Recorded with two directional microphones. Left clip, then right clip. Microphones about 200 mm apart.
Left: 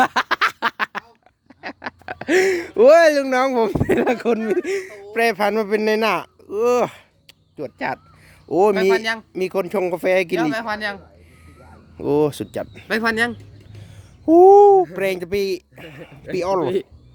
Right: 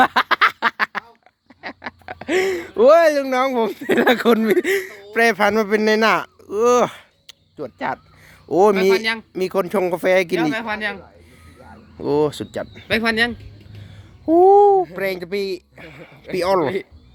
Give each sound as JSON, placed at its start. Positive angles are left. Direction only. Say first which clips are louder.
{"t": 0.0, "sound": "a sound", "louder": "right 3 dB", "side_deg": 5}
{"t": 1.6, "sound": "speech", "louder": "left 1 dB", "side_deg": 20}
{"t": 3.9, "sound": "speech", "louder": "right 6 dB", "side_deg": 0}
{"t": 7.5, "sound": "speech", "louder": "even", "side_deg": 10}
{"t": 8.4, "sound": "speech", "louder": "right 2 dB", "side_deg": 0}
{"t": 8.7, "sound": "speech", "louder": "right 1 dB", "side_deg": 35}
{"t": 9.3, "sound": "speech", "louder": "right 2 dB", "side_deg": 5}
{"t": 14.3, "sound": "babbling", "louder": "left 2 dB", "side_deg": 25}
{"t": 14.9, "sound": "speech", "louder": "left 2 dB", "side_deg": 20}
{"t": 16.3, "sound": "speech", "louder": "right 2 dB", "side_deg": 0}